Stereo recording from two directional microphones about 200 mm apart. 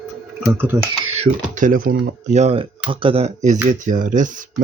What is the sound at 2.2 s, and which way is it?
Speech, 35° right (ahead or behind).